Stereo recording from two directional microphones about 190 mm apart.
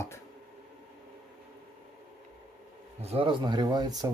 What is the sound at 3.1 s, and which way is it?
Speech, 25° right (ahead or behind).